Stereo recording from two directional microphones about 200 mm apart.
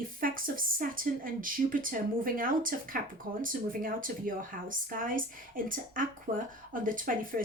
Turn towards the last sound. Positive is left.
turn(degrees=-45)  # may be behind; listen again after turning